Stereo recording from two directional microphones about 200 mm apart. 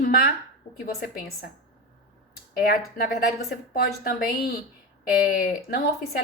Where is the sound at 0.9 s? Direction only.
50° left (ahead or behind).